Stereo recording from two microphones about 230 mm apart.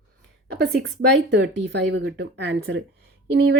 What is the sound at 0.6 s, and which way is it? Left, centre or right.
Speech, right.